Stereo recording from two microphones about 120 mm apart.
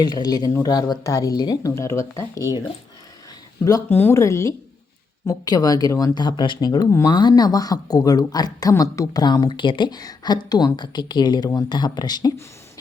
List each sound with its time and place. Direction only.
0.0 s a woman's voice: 35° left (ahead or behind)
3.6 s speech: 30° left (ahead or behind)
3.8 s a woman's voice: 15° left (ahead or behind)
6.1 s a woman's voice: 40° left (ahead or behind)